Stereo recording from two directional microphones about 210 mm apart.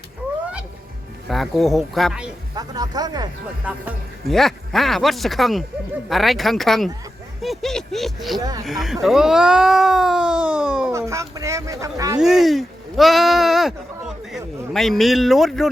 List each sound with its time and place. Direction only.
1.3 s speech: centre (ahead or behind)
2.6 s speech: 20° right (ahead or behind)
3.7 s speech: 5° right (ahead or behind)
8.4 s speech: 20° right (ahead or behind)
8.6 s speech: centre (ahead or behind)
10.9 s speech: 15° right (ahead or behind)
12.2 s speech: centre (ahead or behind)